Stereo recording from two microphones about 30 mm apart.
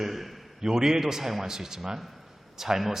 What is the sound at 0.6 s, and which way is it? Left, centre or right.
A man's voice, centre.